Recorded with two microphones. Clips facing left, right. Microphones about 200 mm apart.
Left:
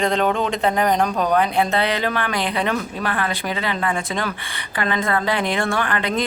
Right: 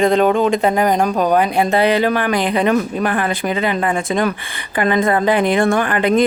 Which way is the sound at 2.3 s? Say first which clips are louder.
Right 6 dB; 50° right (ahead or behind).